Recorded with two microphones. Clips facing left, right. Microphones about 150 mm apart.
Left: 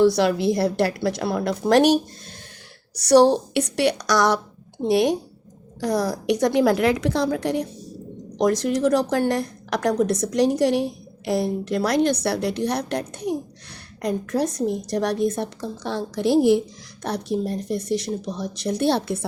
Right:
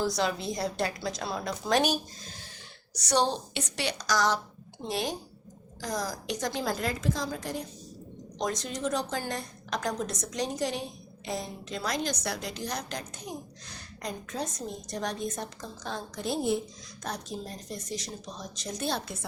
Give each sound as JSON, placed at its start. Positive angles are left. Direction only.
{"t": 0.0, "sound": "a woman's voice", "side_deg": 70}
{"t": 3.0, "sound": "a woman's voice", "side_deg": 65}